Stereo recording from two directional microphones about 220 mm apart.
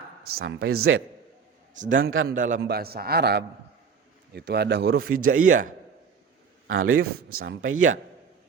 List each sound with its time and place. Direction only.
0.2 s speech: 50° right (ahead or behind); by 0.9 s 70° right (ahead or behind)
2.0 s speech: 65° right (ahead or behind)
2.2 s a man's voice: 35° right (ahead or behind)
6.7 s a man's voice: 70° right (ahead or behind)